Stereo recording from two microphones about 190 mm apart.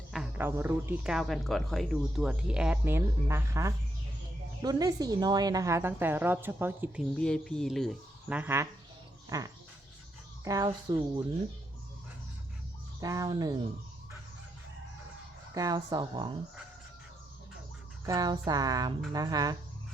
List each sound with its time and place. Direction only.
0.1 s a sound: centre (ahead or behind)
0.4 s a woman's voice: 10° right (ahead or behind)
13.0 s speech: 20° right (ahead or behind)
15.5 s speech: 20° right (ahead or behind)
18.0 s speech: 20° right (ahead or behind)